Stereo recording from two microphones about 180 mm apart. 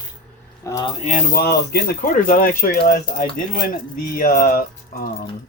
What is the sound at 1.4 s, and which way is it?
Speech, 60° left (ahead or behind).